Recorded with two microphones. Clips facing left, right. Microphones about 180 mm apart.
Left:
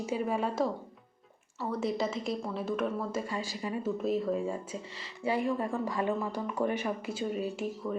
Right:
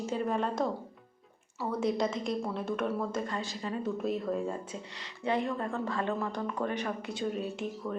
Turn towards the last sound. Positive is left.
turn(degrees=5)  # may be behind; listen again after turning